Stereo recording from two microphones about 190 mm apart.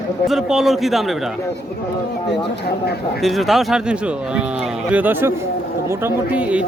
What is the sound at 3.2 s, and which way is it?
A man's voice, centre (ahead or behind).